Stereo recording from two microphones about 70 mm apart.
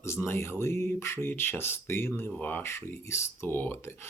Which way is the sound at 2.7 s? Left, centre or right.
Left.